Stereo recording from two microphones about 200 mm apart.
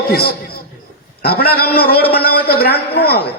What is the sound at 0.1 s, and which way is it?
A man's voice, 50° left (ahead or behind).